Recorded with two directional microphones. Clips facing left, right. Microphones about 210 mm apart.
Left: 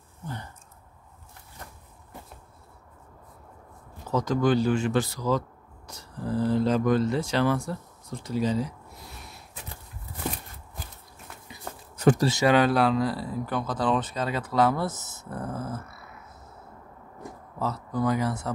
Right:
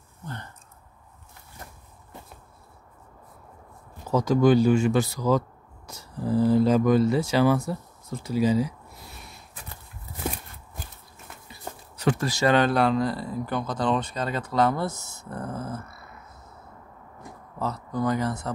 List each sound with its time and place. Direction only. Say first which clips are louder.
4.1 s speech: right 4 dB; 10° right (ahead or behind)
12.0 s speech: left 4 dB; 45° left (ahead or behind)
12.4 s speech: right 1 dB; 5° left (ahead or behind)
17.6 s speech: even; 5° left (ahead or behind)